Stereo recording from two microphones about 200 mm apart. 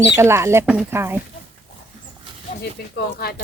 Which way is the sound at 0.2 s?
15° right (ahead or behind).